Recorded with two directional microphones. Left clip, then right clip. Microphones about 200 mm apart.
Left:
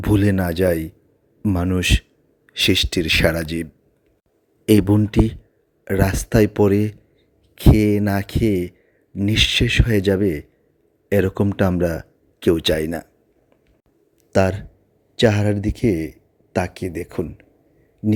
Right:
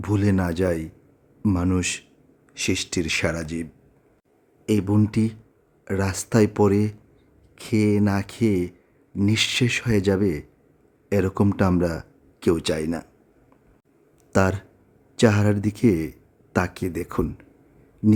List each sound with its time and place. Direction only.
0.0 s speech: 20° left (ahead or behind)
14.3 s speech: 10° left (ahead or behind)